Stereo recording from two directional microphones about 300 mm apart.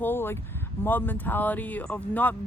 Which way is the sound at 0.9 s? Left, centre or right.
Centre.